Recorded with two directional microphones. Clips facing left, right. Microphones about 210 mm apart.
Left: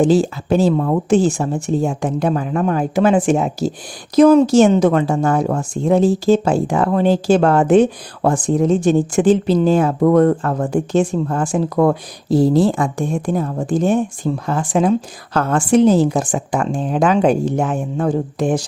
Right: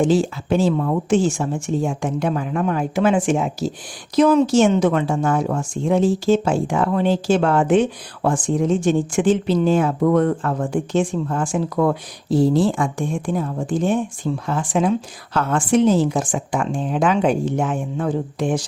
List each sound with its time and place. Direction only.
0.0 s speech: 40° left (ahead or behind)